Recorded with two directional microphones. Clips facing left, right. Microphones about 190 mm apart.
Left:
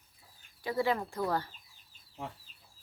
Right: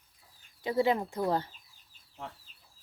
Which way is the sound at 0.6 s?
20° right (ahead or behind).